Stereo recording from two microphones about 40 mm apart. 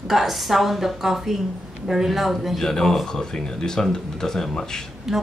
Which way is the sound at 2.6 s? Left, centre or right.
Centre.